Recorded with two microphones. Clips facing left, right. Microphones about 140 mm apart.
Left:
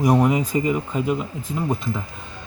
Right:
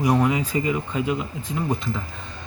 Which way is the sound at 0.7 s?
Centre (ahead or behind).